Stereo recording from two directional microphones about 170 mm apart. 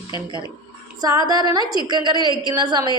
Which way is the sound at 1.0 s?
20° right (ahead or behind).